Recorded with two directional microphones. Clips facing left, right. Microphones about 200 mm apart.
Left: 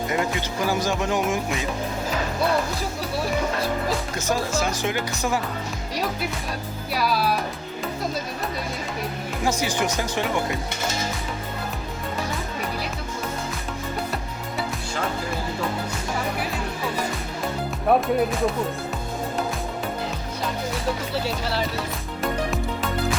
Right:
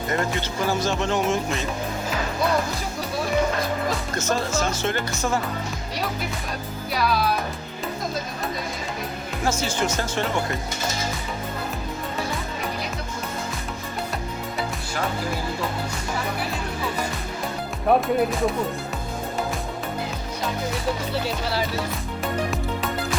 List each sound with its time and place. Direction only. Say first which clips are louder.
0.1 s speech: right 3 dB; 10° left (ahead or behind)
4.1 s speech: even; 10° left (ahead or behind)
6.9 s speech: even; 10° left (ahead or behind)
9.4 s speech: left 1 dB; 15° left (ahead or behind)
17.8 s speech: even; centre (ahead or behind)